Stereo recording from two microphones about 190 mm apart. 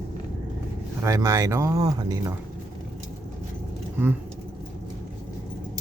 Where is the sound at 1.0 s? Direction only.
15° right (ahead or behind).